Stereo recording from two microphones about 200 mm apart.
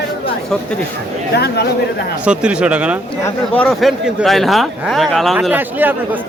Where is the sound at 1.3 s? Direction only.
55° left (ahead or behind).